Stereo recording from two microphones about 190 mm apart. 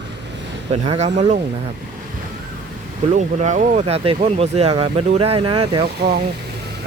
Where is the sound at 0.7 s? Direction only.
35° right (ahead or behind).